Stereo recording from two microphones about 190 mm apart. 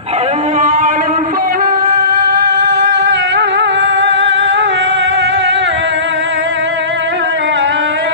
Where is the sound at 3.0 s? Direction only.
70° right (ahead or behind).